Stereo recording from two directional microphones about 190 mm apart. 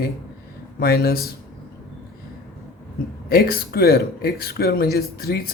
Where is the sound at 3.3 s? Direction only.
55° left (ahead or behind).